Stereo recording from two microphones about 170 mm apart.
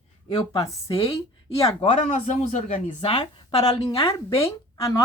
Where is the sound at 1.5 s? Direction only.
35° left (ahead or behind).